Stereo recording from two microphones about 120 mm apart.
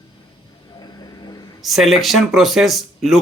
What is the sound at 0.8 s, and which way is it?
Vehicle, 35° left (ahead or behind).